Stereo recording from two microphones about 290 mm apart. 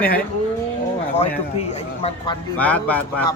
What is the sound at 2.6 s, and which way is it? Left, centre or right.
Speech, centre.